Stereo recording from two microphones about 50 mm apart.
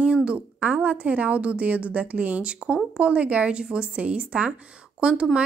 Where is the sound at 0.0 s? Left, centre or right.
Right.